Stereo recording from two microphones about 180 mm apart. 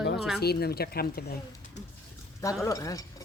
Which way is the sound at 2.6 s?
20° left (ahead or behind).